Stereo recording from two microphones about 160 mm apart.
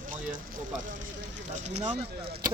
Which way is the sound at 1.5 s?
45° right (ahead or behind).